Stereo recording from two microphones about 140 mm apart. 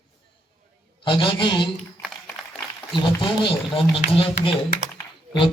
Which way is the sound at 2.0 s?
5° left (ahead or behind).